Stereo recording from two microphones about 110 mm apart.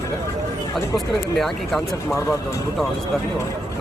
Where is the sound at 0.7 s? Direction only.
Centre (ahead or behind).